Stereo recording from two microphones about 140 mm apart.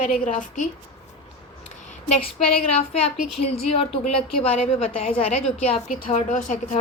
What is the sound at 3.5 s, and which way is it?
A woman's voice, 40° left (ahead or behind).